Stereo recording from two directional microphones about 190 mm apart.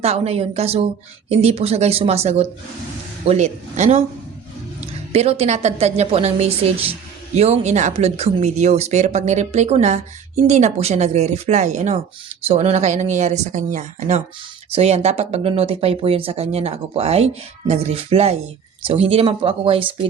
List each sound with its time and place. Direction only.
0.0 s speech: 35° right (ahead or behind)